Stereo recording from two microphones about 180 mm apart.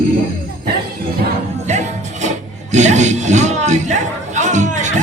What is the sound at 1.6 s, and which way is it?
Music, 40° right (ahead or behind).